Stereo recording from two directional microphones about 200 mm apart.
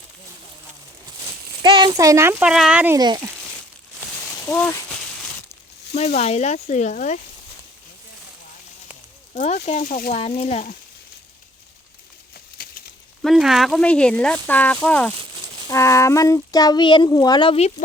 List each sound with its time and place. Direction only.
1.6 s a child's voice: 25° right (ahead or behind); by 3.0 s 10° right (ahead or behind)
3.0 s speech: 20° right (ahead or behind)
4.4 s speech: 10° left (ahead or behind)
6.1 s speech: 35° left (ahead or behind)
9.3 s speech: 40° left (ahead or behind)
13.2 s speech: centre (ahead or behind); by 17.7 s 25° left (ahead or behind)